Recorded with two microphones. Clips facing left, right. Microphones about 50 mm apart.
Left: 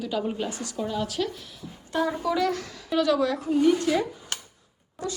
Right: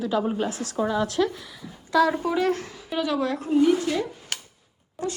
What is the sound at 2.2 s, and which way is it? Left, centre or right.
A woman's voice, right.